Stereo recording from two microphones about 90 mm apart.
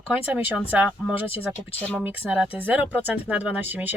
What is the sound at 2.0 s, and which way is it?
Speech, 10° right (ahead or behind).